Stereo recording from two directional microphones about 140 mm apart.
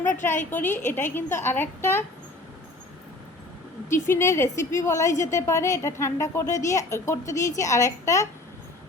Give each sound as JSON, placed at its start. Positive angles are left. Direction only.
{"t": 0.1, "sound": "a sound", "side_deg": 15}
{"t": 0.5, "sound": "a woman's voice", "side_deg": 15}
{"t": 3.8, "sound": "a woman's voice", "side_deg": 15}